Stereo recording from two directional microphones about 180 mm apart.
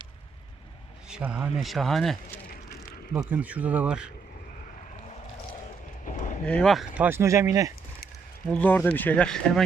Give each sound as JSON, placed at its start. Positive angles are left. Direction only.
{"t": 1.1, "sound": "speech", "side_deg": -5}
{"t": 3.2, "sound": "speech", "side_deg": -10}
{"t": 6.1, "sound": "a sound", "side_deg": 45}
{"t": 6.4, "sound": "speech", "side_deg": 5}
{"t": 6.9, "sound": "speech", "side_deg": -10}
{"t": 8.4, "sound": "speech", "side_deg": 10}